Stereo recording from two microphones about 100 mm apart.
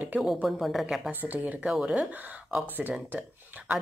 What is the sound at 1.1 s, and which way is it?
Speech, 20° right (ahead or behind).